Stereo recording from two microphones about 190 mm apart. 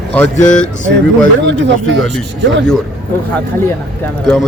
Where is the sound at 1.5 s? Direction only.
70° right (ahead or behind).